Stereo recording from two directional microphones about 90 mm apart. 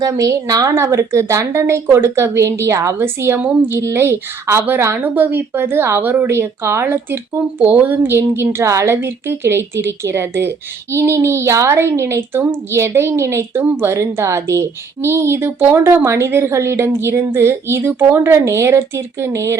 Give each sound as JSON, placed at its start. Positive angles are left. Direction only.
{"t": 0.0, "sound": "a woman's voice", "side_deg": -40}